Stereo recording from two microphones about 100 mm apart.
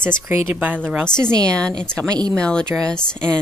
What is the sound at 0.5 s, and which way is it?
Speech, 15° right (ahead or behind).